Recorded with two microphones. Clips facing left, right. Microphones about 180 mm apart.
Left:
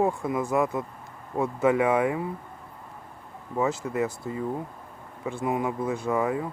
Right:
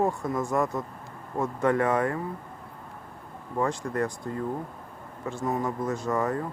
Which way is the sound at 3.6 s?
5° left (ahead or behind).